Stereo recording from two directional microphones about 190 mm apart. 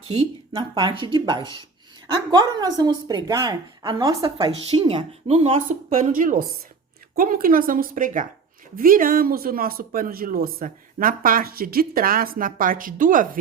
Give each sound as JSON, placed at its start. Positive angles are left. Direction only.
{"t": 0.1, "sound": "speech", "side_deg": -25}
{"t": 5.6, "sound": "speech", "side_deg": -45}